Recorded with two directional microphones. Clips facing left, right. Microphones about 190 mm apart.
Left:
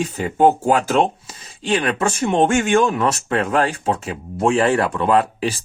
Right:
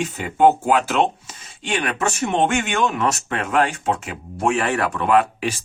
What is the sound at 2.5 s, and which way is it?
Speech, 45° left (ahead or behind).